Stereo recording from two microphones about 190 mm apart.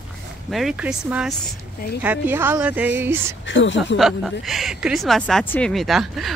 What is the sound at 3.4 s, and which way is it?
Speech, 75° left (ahead or behind).